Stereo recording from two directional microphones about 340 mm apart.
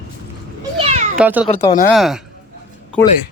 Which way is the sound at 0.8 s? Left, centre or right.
Centre.